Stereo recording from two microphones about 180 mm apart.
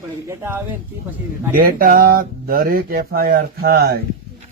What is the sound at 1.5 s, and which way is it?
Speech, 50° right (ahead or behind).